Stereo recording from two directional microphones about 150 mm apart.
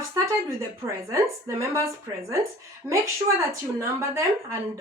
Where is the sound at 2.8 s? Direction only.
20° right (ahead or behind).